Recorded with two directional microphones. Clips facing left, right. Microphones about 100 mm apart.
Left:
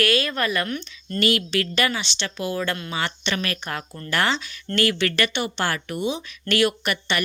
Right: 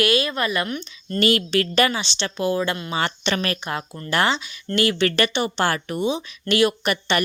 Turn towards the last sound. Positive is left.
turn(degrees=-25)  # may be behind; listen again after turning